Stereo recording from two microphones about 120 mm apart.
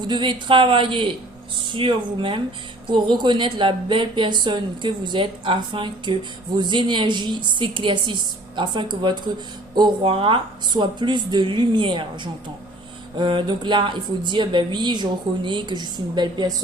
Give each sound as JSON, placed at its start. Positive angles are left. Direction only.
{"t": 0.0, "sound": "speech", "side_deg": -40}